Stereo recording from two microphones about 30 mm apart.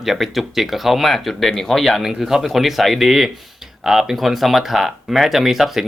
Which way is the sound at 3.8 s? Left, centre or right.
Centre.